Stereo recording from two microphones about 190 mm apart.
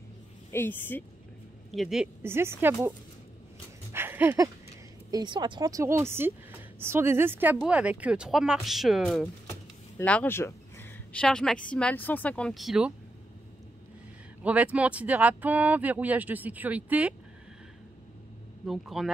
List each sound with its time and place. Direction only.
0.5 s a woman's voice: 10° left (ahead or behind)
1.7 s speech: centre (ahead or behind)
2.2 s speech: 10° right (ahead or behind)
3.9 s a sound: 10° right (ahead or behind)
5.1 s speech: 20° right (ahead or behind); by 12.9 s centre (ahead or behind)
14.4 s speech: 5° right (ahead or behind)
18.7 s speech: centre (ahead or behind)